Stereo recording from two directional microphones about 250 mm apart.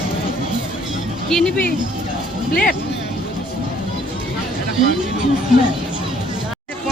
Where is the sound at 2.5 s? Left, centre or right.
Left.